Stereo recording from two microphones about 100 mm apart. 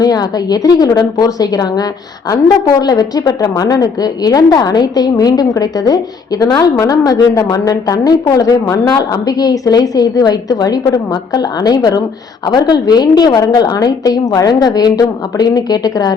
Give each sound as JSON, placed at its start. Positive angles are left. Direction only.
{"t": 0.0, "sound": "a woman's voice", "side_deg": 40}